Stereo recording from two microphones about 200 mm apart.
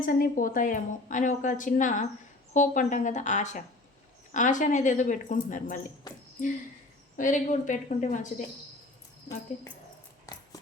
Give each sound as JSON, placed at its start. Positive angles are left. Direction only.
{"t": 0.0, "sound": "a woman's voice", "side_deg": 45}
{"t": 7.2, "sound": "a woman's voice", "side_deg": 40}